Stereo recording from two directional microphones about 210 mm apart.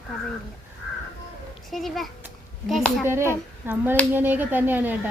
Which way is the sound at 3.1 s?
10° right (ahead or behind).